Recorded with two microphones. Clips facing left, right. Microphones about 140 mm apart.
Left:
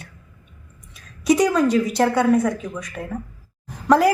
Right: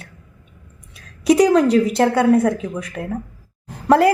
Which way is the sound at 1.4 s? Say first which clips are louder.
Right 6 dB; 30° right (ahead or behind).